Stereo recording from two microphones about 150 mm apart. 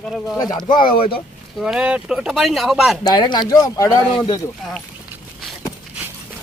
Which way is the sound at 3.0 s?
30° left (ahead or behind).